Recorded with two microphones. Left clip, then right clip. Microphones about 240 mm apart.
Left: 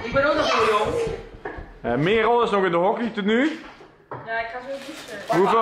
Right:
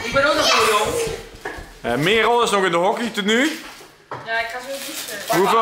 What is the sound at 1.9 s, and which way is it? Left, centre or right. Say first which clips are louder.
Speech: right 3 dB; centre.